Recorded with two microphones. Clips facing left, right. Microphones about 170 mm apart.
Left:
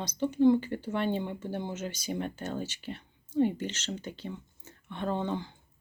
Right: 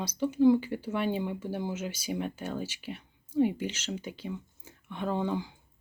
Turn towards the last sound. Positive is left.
turn(degrees=-10)  # may be behind; listen again after turning